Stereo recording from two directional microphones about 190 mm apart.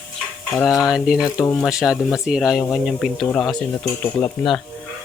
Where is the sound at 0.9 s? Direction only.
5° right (ahead or behind).